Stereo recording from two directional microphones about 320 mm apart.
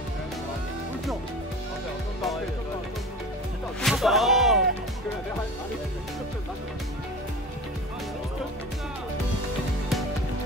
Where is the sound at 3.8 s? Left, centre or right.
Centre.